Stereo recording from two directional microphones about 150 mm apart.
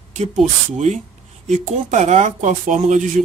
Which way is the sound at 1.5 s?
50° right (ahead or behind).